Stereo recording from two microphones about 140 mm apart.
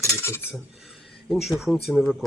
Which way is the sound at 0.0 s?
20° left (ahead or behind).